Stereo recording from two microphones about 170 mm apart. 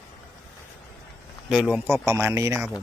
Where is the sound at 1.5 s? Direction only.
5° right (ahead or behind).